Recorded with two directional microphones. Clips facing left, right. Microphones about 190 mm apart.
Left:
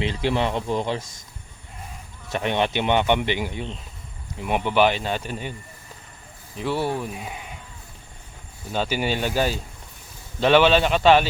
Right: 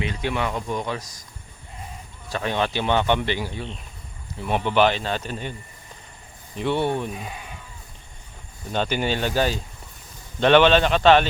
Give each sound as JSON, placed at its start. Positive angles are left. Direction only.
{"t": 0.0, "sound": "speech", "side_deg": 30}
{"t": 2.3, "sound": "speech", "side_deg": 20}
{"t": 6.6, "sound": "speech", "side_deg": 5}
{"t": 7.2, "sound": "speech", "side_deg": 20}
{"t": 8.7, "sound": "speech", "side_deg": 5}